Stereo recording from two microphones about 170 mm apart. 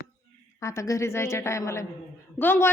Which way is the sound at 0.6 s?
20° left (ahead or behind).